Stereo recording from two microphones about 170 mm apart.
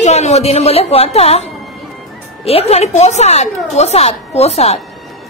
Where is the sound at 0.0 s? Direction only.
40° left (ahead or behind).